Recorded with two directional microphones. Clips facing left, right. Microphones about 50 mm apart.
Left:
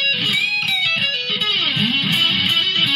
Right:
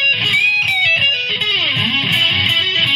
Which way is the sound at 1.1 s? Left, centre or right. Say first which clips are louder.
Right 4 dB; right.